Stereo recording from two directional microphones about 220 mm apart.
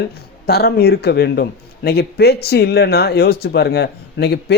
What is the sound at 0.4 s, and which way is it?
A man's voice, 45° left (ahead or behind).